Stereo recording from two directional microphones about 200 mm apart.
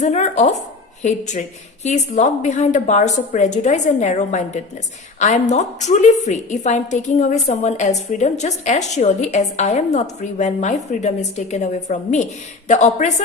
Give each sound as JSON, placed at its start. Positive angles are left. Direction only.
{"t": 0.0, "sound": "a woman's voice", "side_deg": 35}